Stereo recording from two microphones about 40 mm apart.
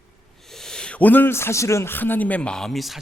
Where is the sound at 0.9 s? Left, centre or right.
Left.